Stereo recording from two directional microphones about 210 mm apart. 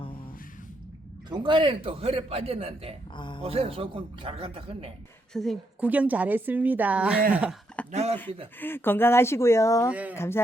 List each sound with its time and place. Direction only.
1.3 s a man's voice: 20° right (ahead or behind)
3.2 s speech: 20° left (ahead or behind)
3.4 s a man's voice: 30° right (ahead or behind)
5.3 s a woman's voice: centre (ahead or behind)
7.9 s speech: 30° right (ahead or behind)
8.5 s speech: 10° left (ahead or behind)
9.9 s a woman's voice: 5° right (ahead or behind)
10.2 s speech: 10° left (ahead or behind)